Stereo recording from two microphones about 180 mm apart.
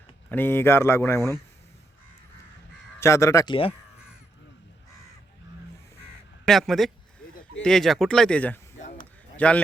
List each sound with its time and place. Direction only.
0.3 s speech: 10° left (ahead or behind)
3.0 s speech: 15° left (ahead or behind)
6.4 s speech: centre (ahead or behind)
8.9 s a sound: 45° left (ahead or behind)